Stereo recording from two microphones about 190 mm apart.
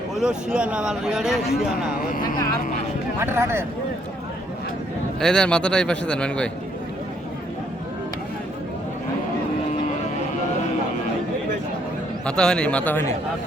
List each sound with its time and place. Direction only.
0.2 s speech: 5° right (ahead or behind)
2.0 s speech: 45° left (ahead or behind)
3.2 s speech: 15° right (ahead or behind)
5.2 s speech: 5° left (ahead or behind)
12.2 s speech: 5° left (ahead or behind)